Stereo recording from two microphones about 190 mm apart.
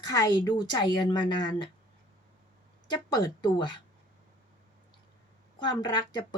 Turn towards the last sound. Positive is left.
turn(degrees=20)  # may be behind; listen again after turning